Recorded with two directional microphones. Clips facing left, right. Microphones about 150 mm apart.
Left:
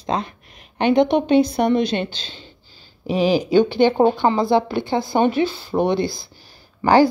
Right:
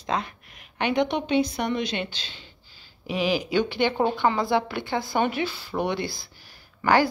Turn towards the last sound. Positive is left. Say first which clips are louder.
# left 6 dB
turn(degrees=30)  # may be behind; listen again after turning